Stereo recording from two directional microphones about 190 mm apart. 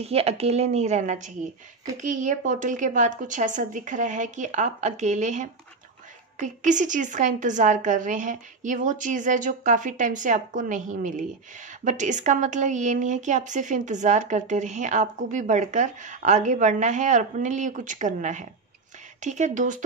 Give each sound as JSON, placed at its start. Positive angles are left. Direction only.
{"t": 0.0, "sound": "speech", "side_deg": -30}